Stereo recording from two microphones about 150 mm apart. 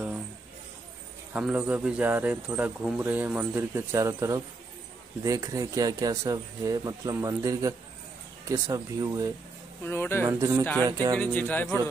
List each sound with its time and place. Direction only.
1.3 s speech: 10° right (ahead or behind)
9.8 s speech: 15° left (ahead or behind)
10.2 s speech: 20° right (ahead or behind)
10.6 s speech: 10° left (ahead or behind)
10.9 s speech: 25° right (ahead or behind)
11.1 s speech: 10° left (ahead or behind)